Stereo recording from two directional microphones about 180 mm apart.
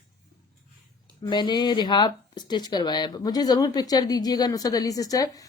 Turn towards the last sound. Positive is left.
turn(degrees=20)  # may be behind; listen again after turning